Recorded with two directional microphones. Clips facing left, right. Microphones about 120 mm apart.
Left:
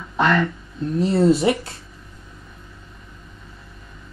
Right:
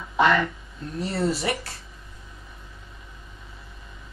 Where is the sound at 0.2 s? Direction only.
5° right (ahead or behind).